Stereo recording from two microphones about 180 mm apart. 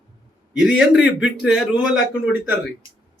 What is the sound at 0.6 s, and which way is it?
Speech, 5° right (ahead or behind).